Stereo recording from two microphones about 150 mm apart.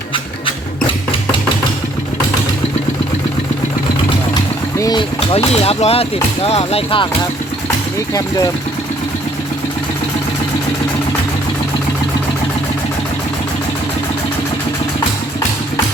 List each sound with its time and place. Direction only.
4.8 s boat: 25° left (ahead or behind)
5.3 s speech: 45° left (ahead or behind)